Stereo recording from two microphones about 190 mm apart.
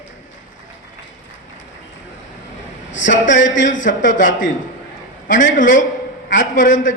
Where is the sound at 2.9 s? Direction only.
75° left (ahead or behind).